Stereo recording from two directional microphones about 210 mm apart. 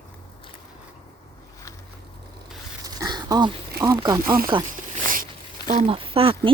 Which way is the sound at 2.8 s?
20° right (ahead or behind).